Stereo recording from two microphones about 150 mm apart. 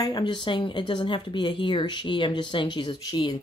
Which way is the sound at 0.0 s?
30° left (ahead or behind).